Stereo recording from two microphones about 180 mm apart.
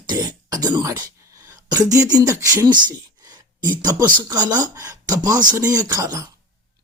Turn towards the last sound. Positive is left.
turn(degrees=-20)  # may be behind; listen again after turning